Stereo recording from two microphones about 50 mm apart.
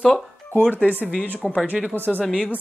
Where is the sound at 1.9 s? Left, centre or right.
Right.